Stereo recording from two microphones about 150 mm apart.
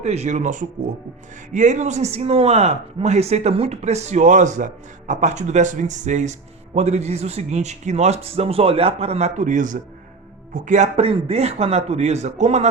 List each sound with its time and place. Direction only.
0.0 s speech: 45° right (ahead or behind)